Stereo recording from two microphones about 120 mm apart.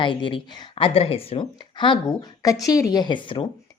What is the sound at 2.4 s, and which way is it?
Speech, 30° left (ahead or behind).